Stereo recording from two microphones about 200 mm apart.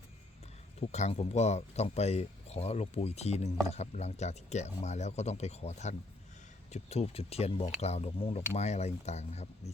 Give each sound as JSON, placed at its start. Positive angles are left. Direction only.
{"t": 0.8, "sound": "speech", "side_deg": 35}